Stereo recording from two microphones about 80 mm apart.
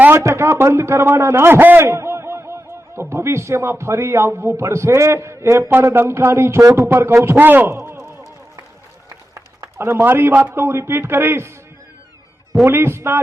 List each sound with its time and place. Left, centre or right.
0.2 s a man's voice: right
1.8 s a man's voice: right
7.3 s a man's voice: right
9.6 s a man's voice: right
12.6 s a man's voice: right